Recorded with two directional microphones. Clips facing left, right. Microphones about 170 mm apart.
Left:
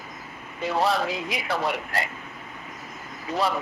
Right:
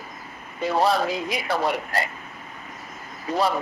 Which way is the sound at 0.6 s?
40° right (ahead or behind).